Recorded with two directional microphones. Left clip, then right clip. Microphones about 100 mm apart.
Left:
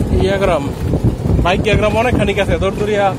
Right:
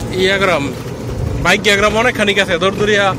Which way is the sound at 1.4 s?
5° right (ahead or behind).